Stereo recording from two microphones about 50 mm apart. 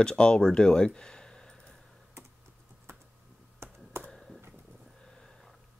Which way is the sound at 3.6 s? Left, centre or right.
Right.